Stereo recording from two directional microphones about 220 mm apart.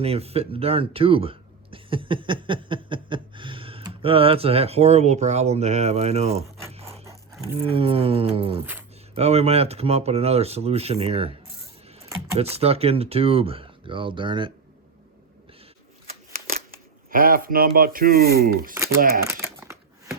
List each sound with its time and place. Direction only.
0.0 s speech: 25° right (ahead or behind)
6.7 s wood: 30° right (ahead or behind)
7.6 s speech: 25° right (ahead or behind)
12.4 s speech: 25° right (ahead or behind)
16.3 s a sound: 40° right (ahead or behind)
17.7 s speech: 40° right (ahead or behind)
18.7 s speech: 15° right (ahead or behind)
19.3 s crumpling: 10° right (ahead or behind)